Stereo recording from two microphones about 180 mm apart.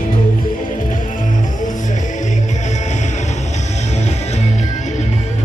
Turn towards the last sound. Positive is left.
turn(degrees=40)  # may be behind; listen again after turning